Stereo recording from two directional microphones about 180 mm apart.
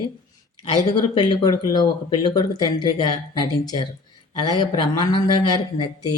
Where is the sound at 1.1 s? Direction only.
25° left (ahead or behind).